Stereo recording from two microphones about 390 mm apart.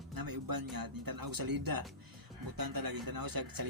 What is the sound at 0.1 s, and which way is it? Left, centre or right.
Speech, right.